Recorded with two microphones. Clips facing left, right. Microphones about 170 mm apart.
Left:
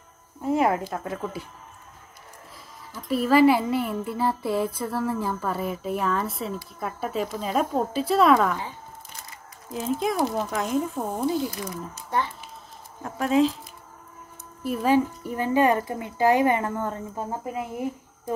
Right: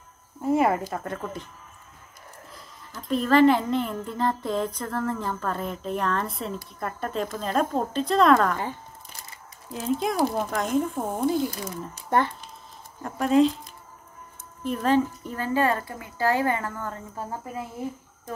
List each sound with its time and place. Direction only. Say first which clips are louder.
0.4 s speech: even; centre (ahead or behind)
3.0 s a child's voice: even; 5° left (ahead or behind)
9.7 s speech: even; centre (ahead or behind)
12.1 s speech: right 4 dB; 50° right (ahead or behind)
13.0 s speech: right 1 dB; centre (ahead or behind)
14.6 s a child's voice: left 1 dB; 10° left (ahead or behind)